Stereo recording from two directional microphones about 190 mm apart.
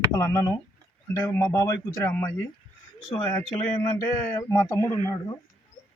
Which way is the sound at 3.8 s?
15° left (ahead or behind).